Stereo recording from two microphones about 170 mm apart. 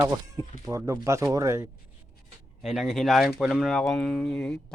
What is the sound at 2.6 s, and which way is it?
Speech, centre (ahead or behind).